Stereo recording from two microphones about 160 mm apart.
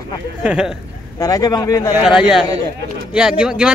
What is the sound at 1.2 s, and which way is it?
Speech, 25° left (ahead or behind).